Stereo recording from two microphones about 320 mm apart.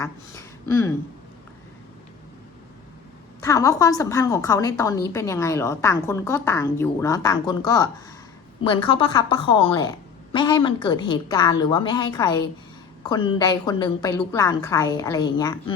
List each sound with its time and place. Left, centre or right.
0.0 s a woman's voice: centre
3.4 s a woman's voice: centre